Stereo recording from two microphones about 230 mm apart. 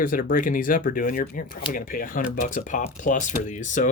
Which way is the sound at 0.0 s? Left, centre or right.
Left.